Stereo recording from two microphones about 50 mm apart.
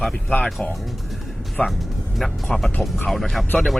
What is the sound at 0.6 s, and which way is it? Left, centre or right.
Speech, left.